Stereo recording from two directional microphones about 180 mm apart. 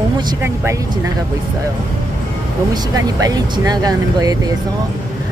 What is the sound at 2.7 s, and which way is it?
Speech, 20° right (ahead or behind).